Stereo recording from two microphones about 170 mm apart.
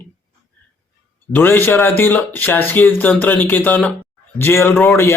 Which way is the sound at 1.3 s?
10° left (ahead or behind).